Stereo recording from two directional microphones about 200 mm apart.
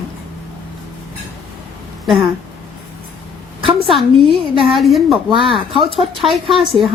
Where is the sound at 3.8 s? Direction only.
25° right (ahead or behind).